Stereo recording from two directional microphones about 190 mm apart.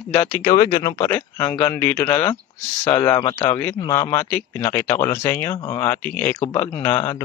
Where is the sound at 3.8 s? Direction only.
15° left (ahead or behind).